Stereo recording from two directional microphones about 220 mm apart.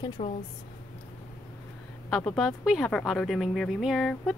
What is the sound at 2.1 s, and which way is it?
A woman's voice, 5° left (ahead or behind).